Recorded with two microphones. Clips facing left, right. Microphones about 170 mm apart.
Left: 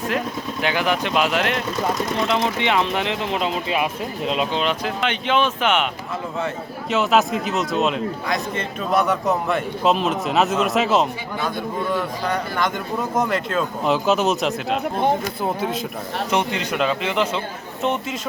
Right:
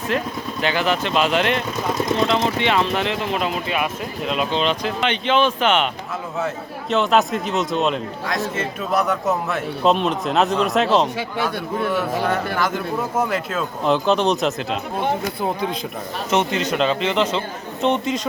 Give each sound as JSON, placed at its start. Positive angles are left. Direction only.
{"t": 0.6, "sound": "speech", "side_deg": 10}
{"t": 2.2, "sound": "speech", "side_deg": 15}
{"t": 4.5, "sound": "speech", "side_deg": 5}
{"t": 6.9, "sound": "a man's voice", "side_deg": 0}
{"t": 12.3, "sound": "a man's voice", "side_deg": -5}
{"t": 16.5, "sound": "speech", "side_deg": 15}